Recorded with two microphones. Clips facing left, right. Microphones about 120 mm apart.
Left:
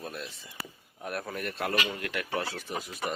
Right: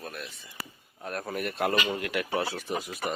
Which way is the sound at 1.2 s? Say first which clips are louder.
Right 7 dB; 10° right (ahead or behind).